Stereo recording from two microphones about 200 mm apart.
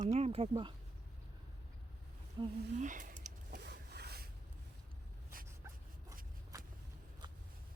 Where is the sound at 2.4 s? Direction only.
25° right (ahead or behind).